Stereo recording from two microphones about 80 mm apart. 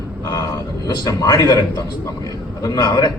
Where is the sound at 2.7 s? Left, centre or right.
Left.